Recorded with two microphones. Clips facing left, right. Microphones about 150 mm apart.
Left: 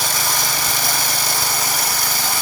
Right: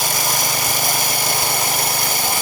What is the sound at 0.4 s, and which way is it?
Lawn mower, 20° right (ahead or behind).